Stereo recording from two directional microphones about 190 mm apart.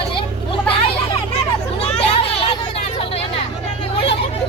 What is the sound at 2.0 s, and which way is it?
Children playing, 30° left (ahead or behind).